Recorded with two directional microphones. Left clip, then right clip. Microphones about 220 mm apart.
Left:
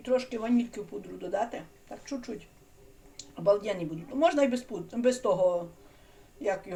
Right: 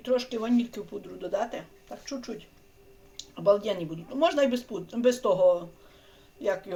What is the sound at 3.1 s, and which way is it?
Speech, 25° right (ahead or behind).